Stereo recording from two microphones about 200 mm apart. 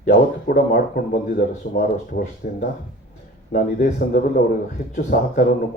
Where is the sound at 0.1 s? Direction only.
45° left (ahead or behind).